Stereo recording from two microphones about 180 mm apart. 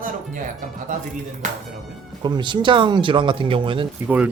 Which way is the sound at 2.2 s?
25° right (ahead or behind).